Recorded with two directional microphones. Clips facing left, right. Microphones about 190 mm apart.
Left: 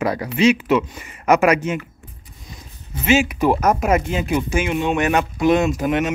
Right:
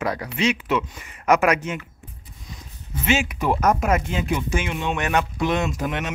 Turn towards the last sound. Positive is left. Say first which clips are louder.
# left 7 dB
turn(degrees=10)  # may be behind; listen again after turning